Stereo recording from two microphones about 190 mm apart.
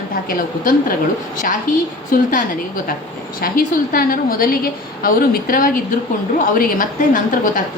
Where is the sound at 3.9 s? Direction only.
50° left (ahead or behind).